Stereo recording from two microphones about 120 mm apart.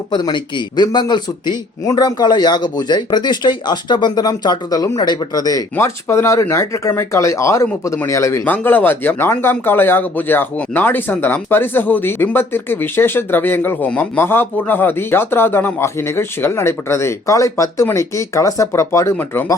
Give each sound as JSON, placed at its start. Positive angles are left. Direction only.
{"t": 0.1, "sound": "speech", "side_deg": 40}
{"t": 5.7, "sound": "speech", "side_deg": 20}